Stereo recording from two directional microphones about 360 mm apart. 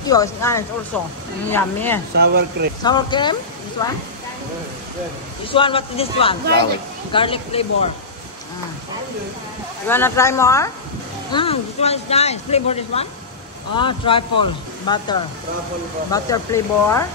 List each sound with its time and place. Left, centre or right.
0.0 s speech: centre
2.1 s speech: right
2.8 s speech: centre
5.5 s speech: centre
9.8 s speech: centre